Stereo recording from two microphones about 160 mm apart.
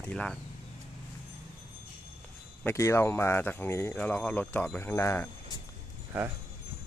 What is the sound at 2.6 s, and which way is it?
Speech, 15° left (ahead or behind).